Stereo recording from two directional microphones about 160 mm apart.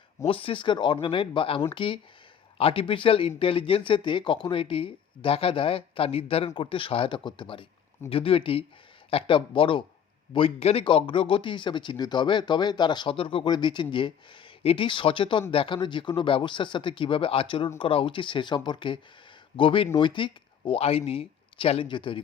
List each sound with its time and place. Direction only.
0.3 s speech: 35° left (ahead or behind)